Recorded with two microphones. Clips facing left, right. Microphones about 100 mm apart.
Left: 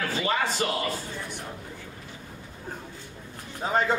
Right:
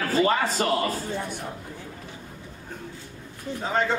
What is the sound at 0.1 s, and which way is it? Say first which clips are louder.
Speech: right 8 dB; 40° right (ahead or behind).